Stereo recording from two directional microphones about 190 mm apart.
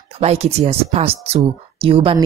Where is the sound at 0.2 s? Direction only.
35° right (ahead or behind).